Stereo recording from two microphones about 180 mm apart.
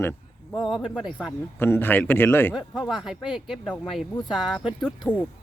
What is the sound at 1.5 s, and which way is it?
Speech, 10° left (ahead or behind).